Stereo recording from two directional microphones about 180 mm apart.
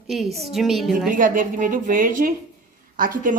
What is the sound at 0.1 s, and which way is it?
A woman's voice, centre (ahead or behind).